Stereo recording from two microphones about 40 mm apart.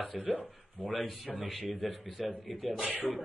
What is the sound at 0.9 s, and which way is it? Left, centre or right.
Speech, centre.